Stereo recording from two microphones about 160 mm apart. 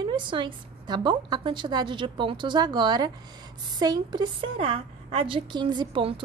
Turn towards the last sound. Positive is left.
turn(degrees=-35)  # may be behind; listen again after turning